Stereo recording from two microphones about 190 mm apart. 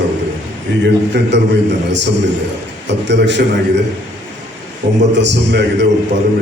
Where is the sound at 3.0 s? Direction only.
65° right (ahead or behind).